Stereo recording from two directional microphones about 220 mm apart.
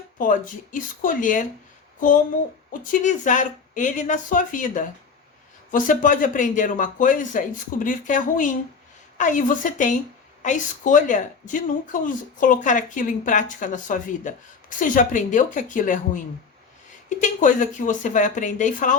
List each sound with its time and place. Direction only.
0.2 s a woman's voice: 35° left (ahead or behind)